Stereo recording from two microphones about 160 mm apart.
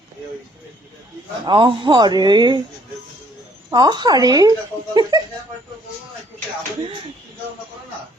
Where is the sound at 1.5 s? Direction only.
30° right (ahead or behind).